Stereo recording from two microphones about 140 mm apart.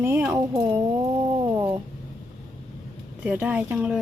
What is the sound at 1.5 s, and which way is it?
Cat, 15° right (ahead or behind).